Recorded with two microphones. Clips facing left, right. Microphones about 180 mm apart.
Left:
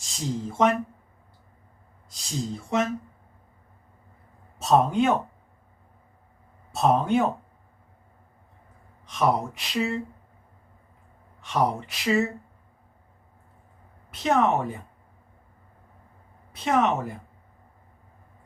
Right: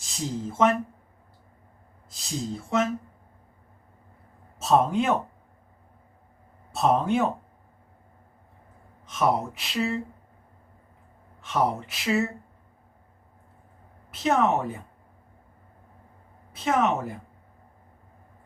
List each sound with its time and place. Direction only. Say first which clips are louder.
0.0 s speech: left 1 dB; centre (ahead or behind)
2.0 s speech: even; centre (ahead or behind)
4.6 s speech: left 1 dB; centre (ahead or behind)
6.7 s speech: left 1 dB; centre (ahead or behind)
9.0 s speech: left 1 dB; centre (ahead or behind)
11.4 s speech: even; centre (ahead or behind)
14.1 s speech: left 1 dB; centre (ahead or behind)
16.5 s speech: left 1 dB; centre (ahead or behind)